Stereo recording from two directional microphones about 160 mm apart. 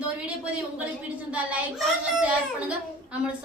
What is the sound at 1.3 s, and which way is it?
A man's voice, 10° right (ahead or behind).